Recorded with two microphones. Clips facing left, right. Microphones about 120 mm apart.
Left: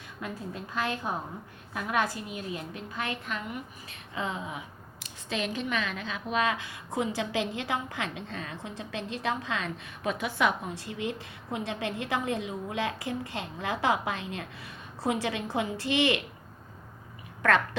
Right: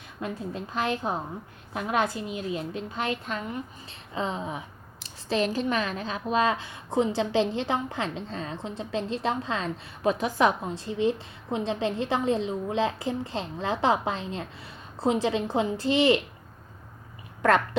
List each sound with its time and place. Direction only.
0.2 s a woman's voice: 25° right (ahead or behind)